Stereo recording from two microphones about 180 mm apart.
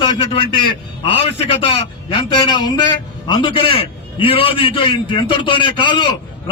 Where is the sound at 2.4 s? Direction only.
20° left (ahead or behind).